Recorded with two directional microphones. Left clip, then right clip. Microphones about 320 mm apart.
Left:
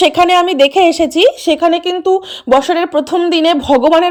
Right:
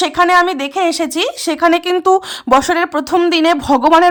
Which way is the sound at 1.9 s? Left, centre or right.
Right.